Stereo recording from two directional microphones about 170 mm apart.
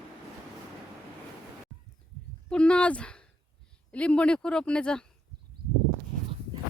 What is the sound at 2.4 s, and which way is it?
A woman's voice, 5° left (ahead or behind).